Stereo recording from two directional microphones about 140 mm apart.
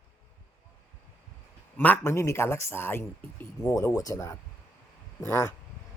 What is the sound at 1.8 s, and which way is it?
A man's voice, 15° left (ahead or behind).